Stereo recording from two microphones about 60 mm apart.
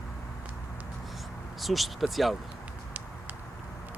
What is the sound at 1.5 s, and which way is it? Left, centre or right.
Speech, centre.